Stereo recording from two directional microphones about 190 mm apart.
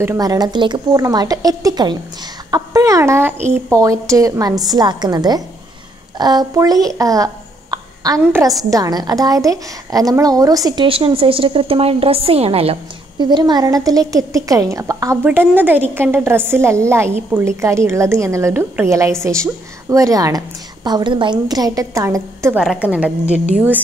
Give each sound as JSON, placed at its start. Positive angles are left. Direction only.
{"t": 0.0, "sound": "a woman's voice", "side_deg": -15}
{"t": 7.7, "sound": "a sound", "side_deg": -20}
{"t": 8.2, "sound": "a woman's voice", "side_deg": -15}